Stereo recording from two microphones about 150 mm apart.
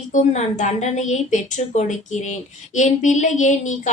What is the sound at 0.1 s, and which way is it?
Speech, 55° left (ahead or behind).